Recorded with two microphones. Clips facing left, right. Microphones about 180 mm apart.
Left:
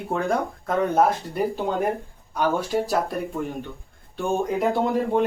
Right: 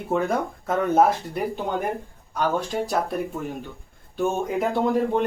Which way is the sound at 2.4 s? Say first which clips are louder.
Left 1 dB; 5° left (ahead or behind).